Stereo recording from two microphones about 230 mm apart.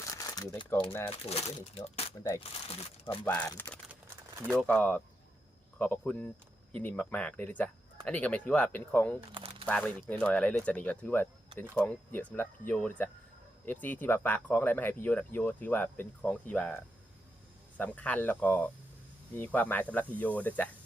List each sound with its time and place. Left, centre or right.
0.1 s shuffling cards: centre
1.3 s speech: left
3.1 s speech: centre
9.3 s crumpling: right
9.6 s speech: centre